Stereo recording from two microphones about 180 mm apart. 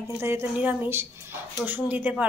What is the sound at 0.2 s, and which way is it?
A woman's voice, 15° right (ahead or behind).